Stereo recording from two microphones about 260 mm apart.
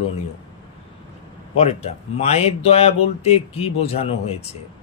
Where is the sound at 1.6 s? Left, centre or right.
Left.